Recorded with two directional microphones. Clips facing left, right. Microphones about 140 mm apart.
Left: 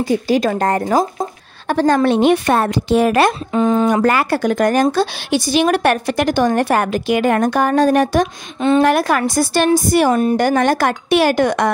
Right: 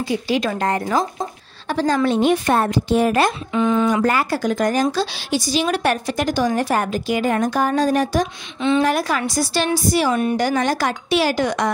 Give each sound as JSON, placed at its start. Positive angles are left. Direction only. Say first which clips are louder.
{"t": 0.0, "sound": "a woman's voice", "louder": "left 5 dB", "side_deg": 45}
{"t": 1.7, "sound": "a woman's voice", "louder": "left 5 dB", "side_deg": 55}
{"t": 2.0, "sound": "speech", "louder": "left 4 dB", "side_deg": 70}
{"t": 3.5, "sound": "speech", "louder": "left 2 dB", "side_deg": 40}
{"t": 3.8, "sound": "a woman's voice", "louder": "left 3 dB", "side_deg": 60}
{"t": 8.5, "sound": "a woman's voice", "louder": "left 4 dB", "side_deg": 45}
{"t": 8.8, "sound": "a woman's voice", "louder": "left 5 dB", "side_deg": 60}